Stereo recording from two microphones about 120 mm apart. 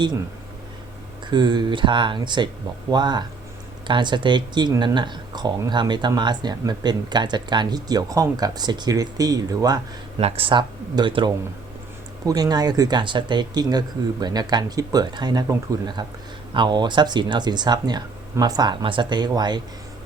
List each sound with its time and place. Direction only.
1.3 s speech: 35° right (ahead or behind)
10.2 s speech: 55° right (ahead or behind); by 19.6 s 35° right (ahead or behind)